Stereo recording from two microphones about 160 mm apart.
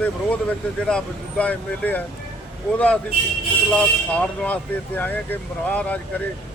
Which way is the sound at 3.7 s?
10° left (ahead or behind).